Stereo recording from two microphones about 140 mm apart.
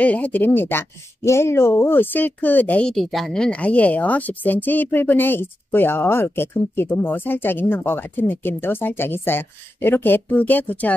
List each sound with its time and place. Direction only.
0.0 s speech: 10° left (ahead or behind)